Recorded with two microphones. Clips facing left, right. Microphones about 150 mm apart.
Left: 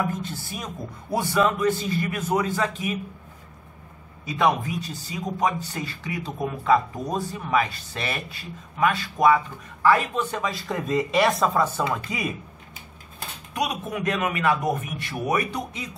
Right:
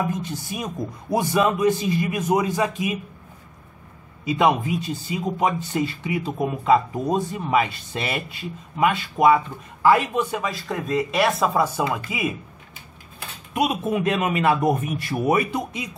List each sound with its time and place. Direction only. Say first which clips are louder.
0.0 s a man's voice: right 2 dB; 15° right (ahead or behind)
4.4 s a man's voice: right 2 dB; 20° right (ahead or behind)
10.4 s speech: right 1 dB; centre (ahead or behind)
13.6 s speech: right 5 dB; 25° right (ahead or behind)
15.5 s a man's voice: right 4 dB; 15° right (ahead or behind)